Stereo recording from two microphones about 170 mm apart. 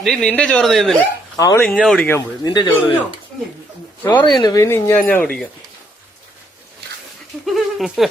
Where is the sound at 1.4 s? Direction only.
20° left (ahead or behind).